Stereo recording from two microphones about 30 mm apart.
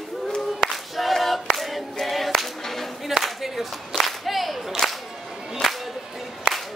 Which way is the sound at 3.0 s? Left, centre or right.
Centre.